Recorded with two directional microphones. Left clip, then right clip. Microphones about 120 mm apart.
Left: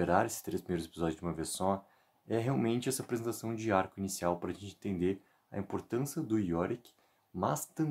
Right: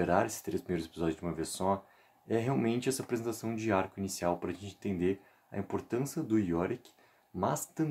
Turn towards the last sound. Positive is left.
turn(degrees=30)  # may be behind; listen again after turning